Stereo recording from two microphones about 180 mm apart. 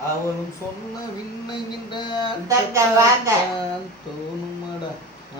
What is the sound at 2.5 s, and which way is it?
Speech, 15° right (ahead or behind).